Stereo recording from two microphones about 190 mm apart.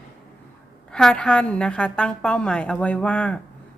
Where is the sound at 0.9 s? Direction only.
5° left (ahead or behind).